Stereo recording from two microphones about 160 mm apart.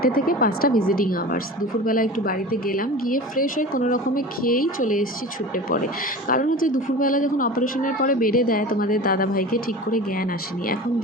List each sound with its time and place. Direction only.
0.0 s a woman's voice: 65° left (ahead or behind)
6.2 s a woman's voice: 60° left (ahead or behind)